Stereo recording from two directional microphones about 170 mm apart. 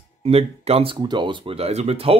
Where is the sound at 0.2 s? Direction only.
35° right (ahead or behind).